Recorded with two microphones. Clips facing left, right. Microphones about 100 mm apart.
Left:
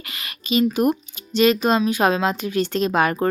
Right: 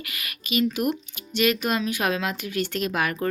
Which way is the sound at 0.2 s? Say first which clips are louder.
Left 5 dB; 30° left (ahead or behind).